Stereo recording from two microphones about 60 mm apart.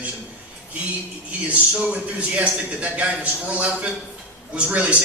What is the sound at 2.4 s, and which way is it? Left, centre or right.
A man's voice, right.